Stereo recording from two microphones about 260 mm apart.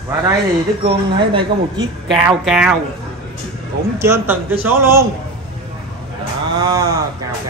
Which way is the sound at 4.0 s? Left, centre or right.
Centre.